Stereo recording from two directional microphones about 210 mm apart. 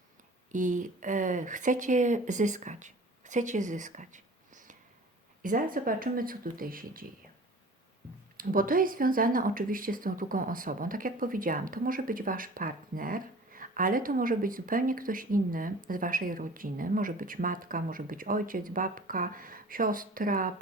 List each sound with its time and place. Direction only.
0.5 s speech: 35° right (ahead or behind)
8.4 s speech: 40° right (ahead or behind)